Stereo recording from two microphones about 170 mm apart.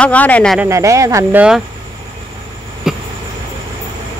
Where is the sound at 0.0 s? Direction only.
10° left (ahead or behind).